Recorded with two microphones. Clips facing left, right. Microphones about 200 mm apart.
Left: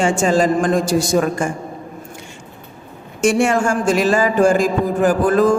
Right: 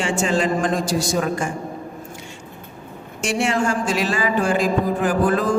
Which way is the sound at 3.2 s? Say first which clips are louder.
Left 5 dB; 50° left (ahead or behind).